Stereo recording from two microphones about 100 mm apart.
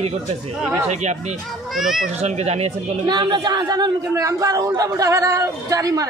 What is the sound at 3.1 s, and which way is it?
A man's voice, 45° right (ahead or behind).